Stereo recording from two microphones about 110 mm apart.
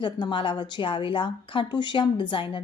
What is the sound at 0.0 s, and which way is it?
Speech, 45° left (ahead or behind).